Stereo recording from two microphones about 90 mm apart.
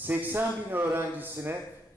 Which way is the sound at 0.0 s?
20° right (ahead or behind).